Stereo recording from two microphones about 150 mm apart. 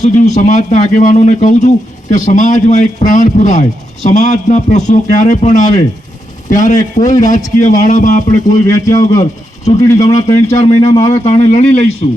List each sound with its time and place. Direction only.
0.0 s a man's voice: 50° left (ahead or behind)
8.6 s a man's voice: 20° left (ahead or behind)
10.1 s a man's voice: 45° left (ahead or behind)